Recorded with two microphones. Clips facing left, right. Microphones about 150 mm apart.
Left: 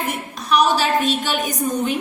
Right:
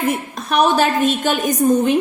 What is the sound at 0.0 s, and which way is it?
A woman's voice, 50° right (ahead or behind).